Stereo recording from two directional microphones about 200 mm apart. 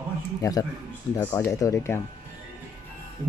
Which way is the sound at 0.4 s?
15° left (ahead or behind).